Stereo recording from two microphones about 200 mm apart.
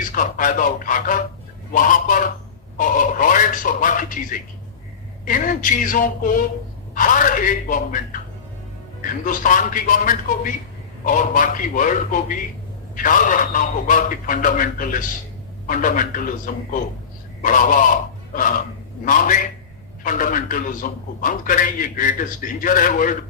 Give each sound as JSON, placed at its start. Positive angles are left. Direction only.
{"t": 0.1, "sound": "a man's voice", "side_deg": 40}
{"t": 9.0, "sound": "a man's voice", "side_deg": 45}
{"t": 17.4, "sound": "speech", "side_deg": 40}
{"t": 19.0, "sound": "a man's voice", "side_deg": 40}